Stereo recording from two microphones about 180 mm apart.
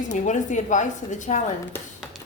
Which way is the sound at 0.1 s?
40° left (ahead or behind).